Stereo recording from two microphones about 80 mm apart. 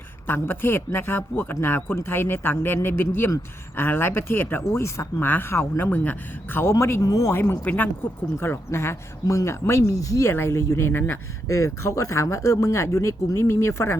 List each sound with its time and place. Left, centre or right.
0.3 s speech: left
7.6 s speech: left
8.4 s speech: left
11.4 s speech: left